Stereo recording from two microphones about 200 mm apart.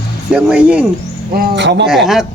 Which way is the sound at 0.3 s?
5° right (ahead or behind).